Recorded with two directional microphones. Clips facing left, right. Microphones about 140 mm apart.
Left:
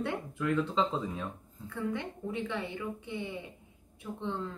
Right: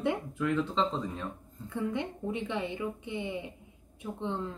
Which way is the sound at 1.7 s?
20° right (ahead or behind).